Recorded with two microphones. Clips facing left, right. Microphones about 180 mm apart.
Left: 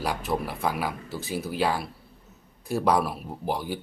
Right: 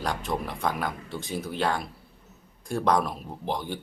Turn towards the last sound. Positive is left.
turn(degrees=10)  # may be behind; listen again after turning